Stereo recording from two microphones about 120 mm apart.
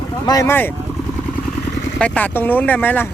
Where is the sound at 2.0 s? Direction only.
15° left (ahead or behind).